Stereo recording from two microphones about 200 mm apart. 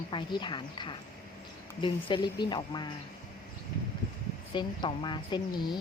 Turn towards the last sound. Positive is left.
turn(degrees=20)  # may be behind; listen again after turning